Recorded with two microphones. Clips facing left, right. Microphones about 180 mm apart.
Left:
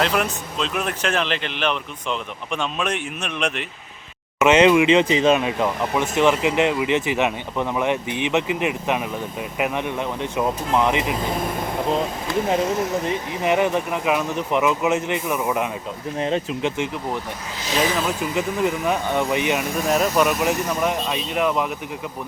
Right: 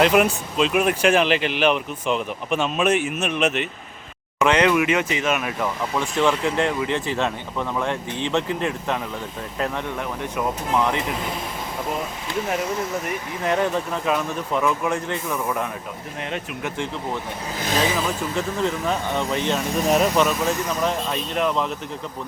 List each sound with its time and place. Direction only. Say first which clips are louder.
0.0 s speech: right 5 dB; 10° right (ahead or behind)
4.4 s speech: left 4 dB; 20° left (ahead or behind)
13.1 s speech: left 3 dB; 15° left (ahead or behind)
16.2 s speech: left 7 dB; 30° left (ahead or behind)
17.9 s speech: left 1 dB; 5° left (ahead or behind)
18.2 s speech: left 2 dB; 15° left (ahead or behind)
19.9 s speech: even; centre (ahead or behind)
20.2 s speech: left 2 dB; 10° left (ahead or behind)